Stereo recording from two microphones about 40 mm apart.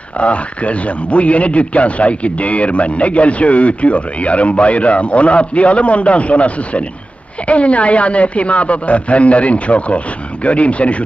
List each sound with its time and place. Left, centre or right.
0.2 s speech: left